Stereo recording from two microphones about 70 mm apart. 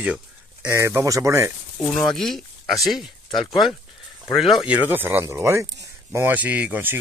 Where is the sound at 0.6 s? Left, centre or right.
Right.